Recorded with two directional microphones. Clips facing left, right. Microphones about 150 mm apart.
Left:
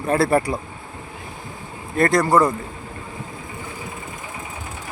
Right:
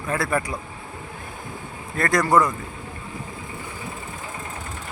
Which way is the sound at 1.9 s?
25° left (ahead or behind).